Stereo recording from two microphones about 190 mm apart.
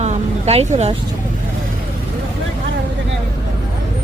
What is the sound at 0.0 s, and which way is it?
Vehicle, 35° right (ahead or behind).